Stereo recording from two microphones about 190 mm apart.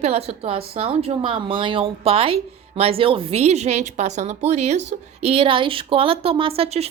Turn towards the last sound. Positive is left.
turn(degrees=-30)  # may be behind; listen again after turning